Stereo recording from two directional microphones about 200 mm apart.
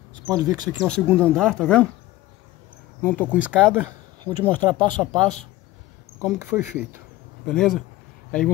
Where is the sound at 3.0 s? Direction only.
10° left (ahead or behind).